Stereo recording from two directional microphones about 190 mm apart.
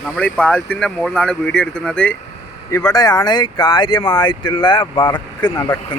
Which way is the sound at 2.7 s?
20° left (ahead or behind).